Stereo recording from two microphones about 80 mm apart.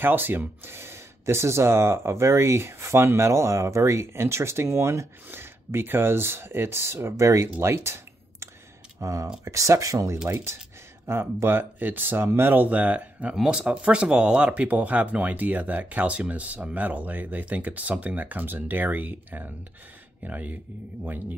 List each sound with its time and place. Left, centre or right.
0.0 s speech: right
7.6 s a sound: right
9.0 s speech: right